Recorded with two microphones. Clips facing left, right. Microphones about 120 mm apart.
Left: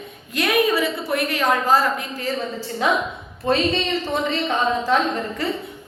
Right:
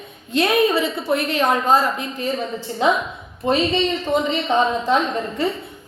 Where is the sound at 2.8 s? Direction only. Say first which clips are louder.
Right 2 dB; 20° right (ahead or behind).